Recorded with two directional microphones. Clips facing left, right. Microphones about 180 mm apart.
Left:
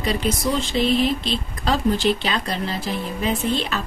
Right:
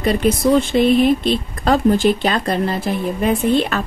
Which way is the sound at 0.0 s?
55° right (ahead or behind).